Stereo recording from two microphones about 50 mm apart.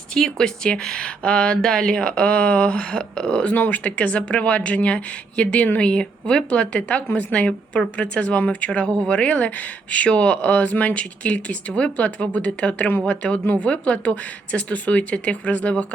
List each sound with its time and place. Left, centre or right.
0.1 s speech: centre; by 15.7 s left